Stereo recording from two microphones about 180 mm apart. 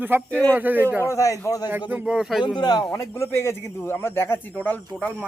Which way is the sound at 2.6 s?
25° left (ahead or behind).